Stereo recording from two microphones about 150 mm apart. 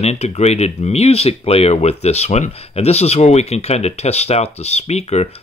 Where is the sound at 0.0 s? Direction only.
45° left (ahead or behind).